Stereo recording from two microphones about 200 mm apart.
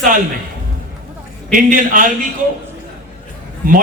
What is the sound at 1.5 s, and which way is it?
Speech, 45° right (ahead or behind).